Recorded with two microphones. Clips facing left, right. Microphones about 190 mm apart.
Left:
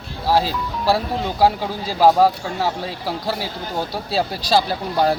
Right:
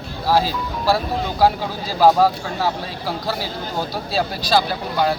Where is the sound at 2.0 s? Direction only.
20° left (ahead or behind).